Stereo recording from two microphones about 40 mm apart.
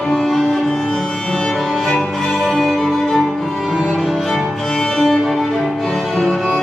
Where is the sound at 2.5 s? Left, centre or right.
Centre.